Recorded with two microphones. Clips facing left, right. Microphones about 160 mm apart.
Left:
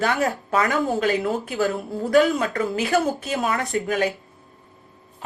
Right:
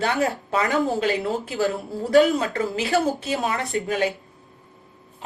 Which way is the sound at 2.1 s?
25° right (ahead or behind).